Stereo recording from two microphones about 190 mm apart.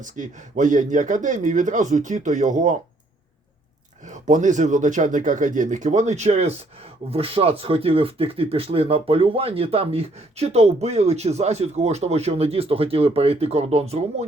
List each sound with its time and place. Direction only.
0.0 s speech: 40° right (ahead or behind)
4.0 s speech: 40° right (ahead or behind)